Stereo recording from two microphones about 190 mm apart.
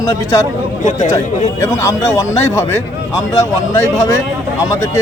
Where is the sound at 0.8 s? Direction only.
40° left (ahead or behind).